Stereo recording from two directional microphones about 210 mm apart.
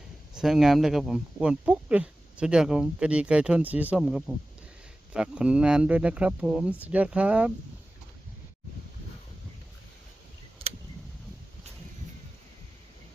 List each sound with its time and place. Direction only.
0.3 s speech: centre (ahead or behind)
10.6 s tick: 25° right (ahead or behind)